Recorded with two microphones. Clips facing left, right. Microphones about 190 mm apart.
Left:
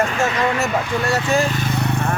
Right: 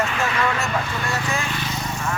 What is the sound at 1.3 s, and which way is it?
Vehicle, 40° left (ahead or behind).